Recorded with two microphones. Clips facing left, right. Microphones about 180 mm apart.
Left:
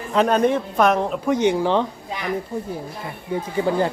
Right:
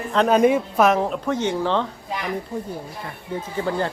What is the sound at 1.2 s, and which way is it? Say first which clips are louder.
Speech: left 4 dB; 15° left (ahead or behind).